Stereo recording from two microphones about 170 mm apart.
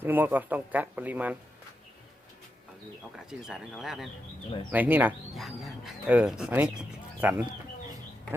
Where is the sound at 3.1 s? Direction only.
Centre (ahead or behind).